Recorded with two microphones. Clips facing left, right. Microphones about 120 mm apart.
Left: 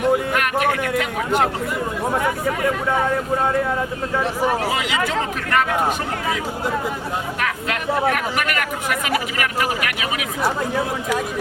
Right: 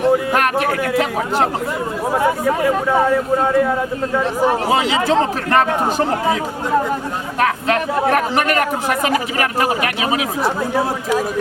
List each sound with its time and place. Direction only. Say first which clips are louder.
0.0 s a man's voice: right 4 dB; 35° right (ahead or behind)
4.4 s speech: right 5 dB; 30° right (ahead or behind)
7.3 s speech: right 7 dB; 35° right (ahead or behind)